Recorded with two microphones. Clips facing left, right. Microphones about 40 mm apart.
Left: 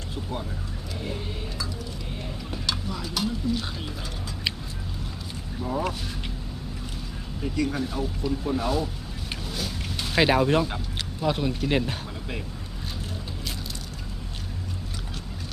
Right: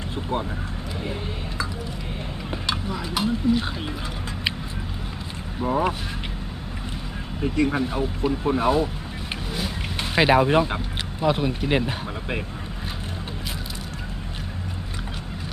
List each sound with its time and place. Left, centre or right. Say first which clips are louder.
1.0 s speech: right 1 dB; right
5.5 s speech: right 6 dB; right
7.4 s speech: right 5 dB; right
9.5 s vehicle: right 3 dB; right
10.2 s speech: right 3 dB; centre